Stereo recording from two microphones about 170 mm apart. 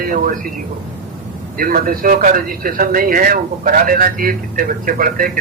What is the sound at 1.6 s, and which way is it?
Speech, 55° right (ahead or behind).